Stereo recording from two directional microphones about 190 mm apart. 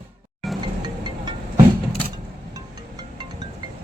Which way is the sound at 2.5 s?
20° right (ahead or behind).